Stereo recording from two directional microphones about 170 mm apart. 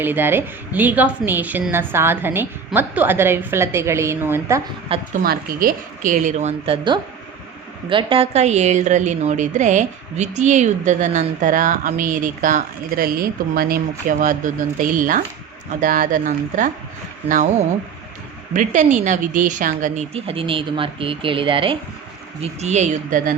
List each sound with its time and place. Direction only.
0.0 s a woman's voice: 10° right (ahead or behind)
5.1 s a woman's voice: 60° right (ahead or behind); by 6.7 s 40° right (ahead or behind)
7.9 s a woman's voice: 30° right (ahead or behind); by 17.5 s 50° right (ahead or behind)
18.5 s a woman's voice: 45° right (ahead or behind)
20.1 s speech: 35° right (ahead or behind)
22.6 s a woman's voice: 40° right (ahead or behind)